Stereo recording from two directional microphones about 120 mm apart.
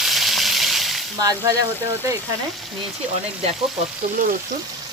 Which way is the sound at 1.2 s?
30° right (ahead or behind).